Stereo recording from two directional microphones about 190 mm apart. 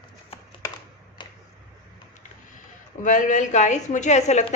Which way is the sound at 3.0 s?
40° left (ahead or behind).